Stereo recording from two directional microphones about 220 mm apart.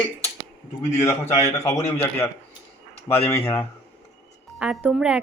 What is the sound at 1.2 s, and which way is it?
Speech, 30° left (ahead or behind).